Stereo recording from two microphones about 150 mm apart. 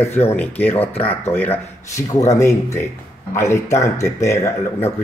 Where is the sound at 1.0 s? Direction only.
15° left (ahead or behind).